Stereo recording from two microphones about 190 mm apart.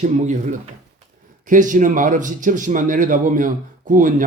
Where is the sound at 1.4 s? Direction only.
45° right (ahead or behind).